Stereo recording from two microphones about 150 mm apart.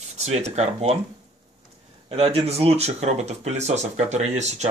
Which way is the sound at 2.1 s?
40° right (ahead or behind).